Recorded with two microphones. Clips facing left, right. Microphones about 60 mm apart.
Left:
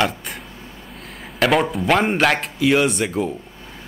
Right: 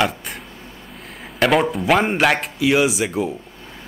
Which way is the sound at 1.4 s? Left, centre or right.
Centre.